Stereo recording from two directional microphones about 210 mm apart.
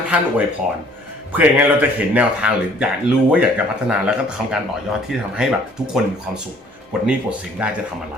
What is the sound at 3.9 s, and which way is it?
Speech, 5° right (ahead or behind).